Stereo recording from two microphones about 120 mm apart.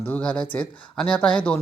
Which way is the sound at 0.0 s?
10° left (ahead or behind).